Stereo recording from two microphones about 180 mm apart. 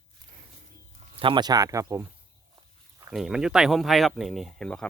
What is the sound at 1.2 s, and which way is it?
Speech, 25° right (ahead or behind).